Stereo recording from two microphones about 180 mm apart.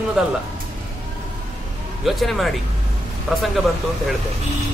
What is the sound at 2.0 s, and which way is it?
Speech, centre (ahead or behind).